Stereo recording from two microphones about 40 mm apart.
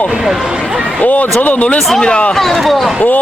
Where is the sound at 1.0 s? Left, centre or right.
Left.